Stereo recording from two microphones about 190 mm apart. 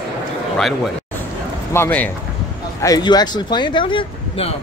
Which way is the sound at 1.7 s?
10° left (ahead or behind).